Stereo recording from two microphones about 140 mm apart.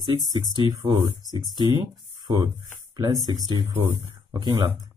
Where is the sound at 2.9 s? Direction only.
30° right (ahead or behind).